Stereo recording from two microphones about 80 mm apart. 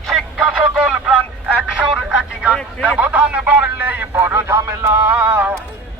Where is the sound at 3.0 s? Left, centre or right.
Centre.